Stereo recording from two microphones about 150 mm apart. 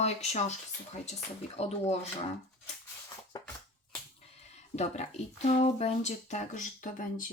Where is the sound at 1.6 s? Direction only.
45° left (ahead or behind).